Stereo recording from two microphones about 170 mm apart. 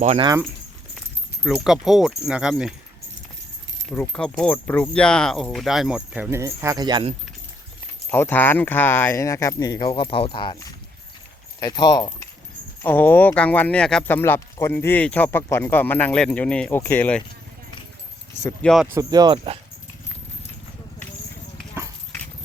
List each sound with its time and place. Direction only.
0.0 s speech: 40° right (ahead or behind)
1.5 s speech: centre (ahead or behind)
3.8 s speech: 10° left (ahead or behind)
6.3 s speech: 15° right (ahead or behind)
8.1 s speech: 10° left (ahead or behind)
12.8 s speech: 10° left (ahead or behind)
18.6 s speech: centre (ahead or behind)
18.9 s speech: 25° right (ahead or behind)
21.8 s dog: 15° right (ahead or behind)